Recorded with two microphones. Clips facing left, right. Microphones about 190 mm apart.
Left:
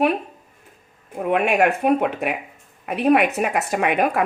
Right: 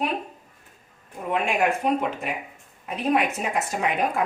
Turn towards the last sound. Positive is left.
turn(degrees=65)  # may be behind; listen again after turning